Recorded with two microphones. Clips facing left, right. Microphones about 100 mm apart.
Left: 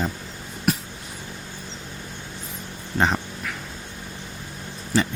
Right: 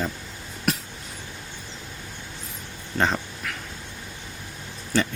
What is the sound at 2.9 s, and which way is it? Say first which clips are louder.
Speech: left 2 dB; 15° left (ahead or behind).